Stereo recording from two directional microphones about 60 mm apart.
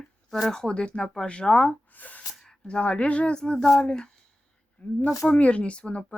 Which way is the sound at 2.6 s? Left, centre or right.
Centre.